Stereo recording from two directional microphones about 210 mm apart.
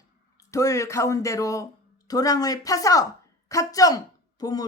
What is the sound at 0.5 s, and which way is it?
A woman's voice, 15° left (ahead or behind).